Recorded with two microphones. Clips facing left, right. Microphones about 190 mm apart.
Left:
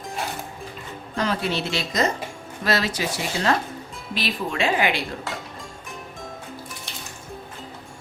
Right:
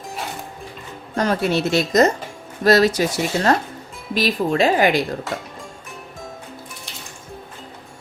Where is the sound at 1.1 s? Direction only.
45° right (ahead or behind).